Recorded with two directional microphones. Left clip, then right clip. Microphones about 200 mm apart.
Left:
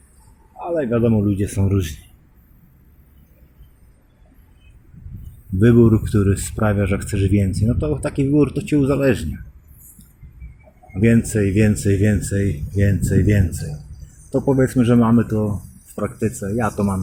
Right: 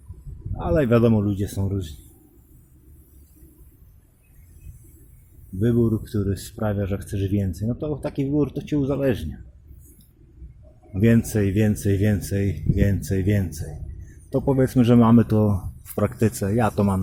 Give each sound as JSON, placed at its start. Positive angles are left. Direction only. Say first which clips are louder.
{"t": 0.6, "sound": "speech", "louder": "right 1 dB", "side_deg": -40}
{"t": 1.2, "sound": "speech", "louder": "left 5 dB", "side_deg": -10}
{"t": 5.5, "sound": "speech", "louder": "left 8 dB", "side_deg": 0}
{"t": 10.9, "sound": "speech", "louder": "left 3 dB", "side_deg": -15}